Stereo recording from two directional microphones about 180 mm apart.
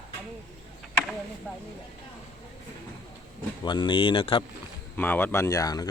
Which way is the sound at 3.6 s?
25° left (ahead or behind).